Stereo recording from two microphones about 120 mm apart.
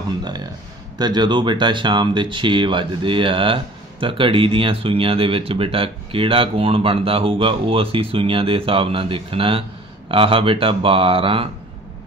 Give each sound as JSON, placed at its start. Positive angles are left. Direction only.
{"t": 0.9, "sound": "speech", "side_deg": -35}